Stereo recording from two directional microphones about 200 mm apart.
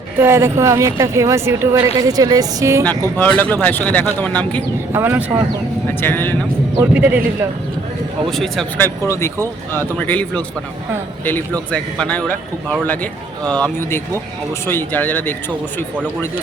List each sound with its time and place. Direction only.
0.2 s speech: 15° right (ahead or behind)
3.2 s speech: 10° left (ahead or behind)
4.9 s speech: 10° right (ahead or behind)
5.9 s speech: 10° left (ahead or behind)
6.7 s speech: 10° right (ahead or behind)
8.3 s speech: centre (ahead or behind)